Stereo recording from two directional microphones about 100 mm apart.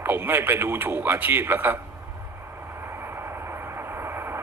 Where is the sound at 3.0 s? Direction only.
25° right (ahead or behind).